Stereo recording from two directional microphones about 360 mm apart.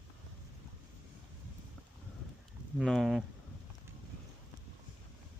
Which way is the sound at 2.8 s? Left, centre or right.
Centre.